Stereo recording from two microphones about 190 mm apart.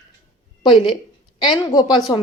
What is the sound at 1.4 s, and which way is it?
Speech, 25° left (ahead or behind).